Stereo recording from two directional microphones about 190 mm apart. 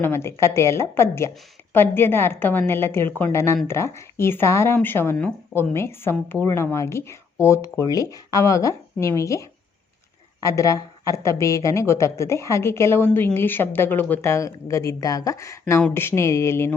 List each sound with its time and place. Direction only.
0.0 s speech: 15° left (ahead or behind)